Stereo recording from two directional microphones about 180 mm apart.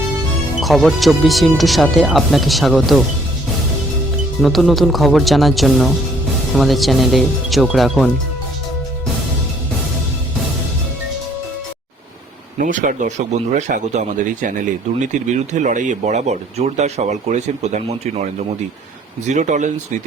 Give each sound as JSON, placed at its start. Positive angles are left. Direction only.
{"t": 0.6, "sound": "speech", "side_deg": 0}
{"t": 4.4, "sound": "speech", "side_deg": 0}
{"t": 12.5, "sound": "speech", "side_deg": -45}
{"t": 19.3, "sound": "speech", "side_deg": -40}